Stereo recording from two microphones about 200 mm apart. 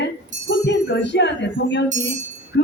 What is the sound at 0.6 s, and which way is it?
Music, 60° left (ahead or behind).